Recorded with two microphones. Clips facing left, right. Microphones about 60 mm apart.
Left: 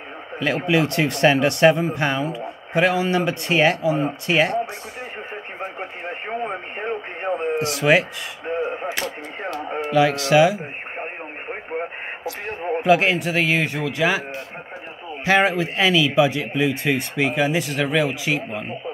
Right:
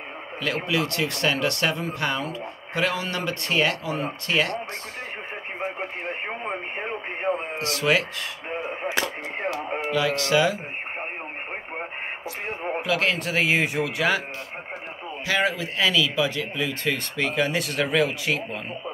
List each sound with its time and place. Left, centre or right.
0.7 s speech: left
6.2 s speech: centre
7.5 s speech: left
8.5 s speech: centre
9.9 s speech: left
12.4 s speech: centre
12.8 s speech: left
13.1 s speech: centre
15.2 s speech: left; by 18.8 s centre